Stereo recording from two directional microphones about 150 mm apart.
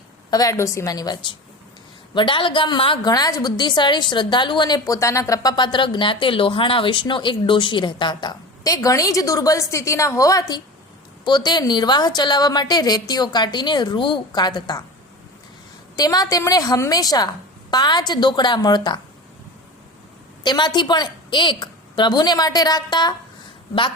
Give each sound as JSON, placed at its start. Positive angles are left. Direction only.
{"t": 0.3, "sound": "a woman's voice", "side_deg": 25}
{"t": 16.0, "sound": "a woman's voice", "side_deg": 25}
{"t": 20.4, "sound": "a woman's voice", "side_deg": 30}